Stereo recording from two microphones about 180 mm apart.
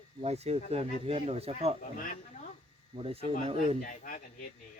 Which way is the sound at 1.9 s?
50° left (ahead or behind).